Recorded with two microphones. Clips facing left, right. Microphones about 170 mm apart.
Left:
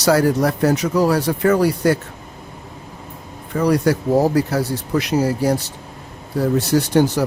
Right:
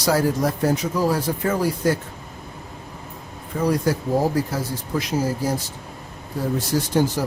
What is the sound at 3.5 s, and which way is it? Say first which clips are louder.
Speech: left 4 dB; 70° left (ahead or behind).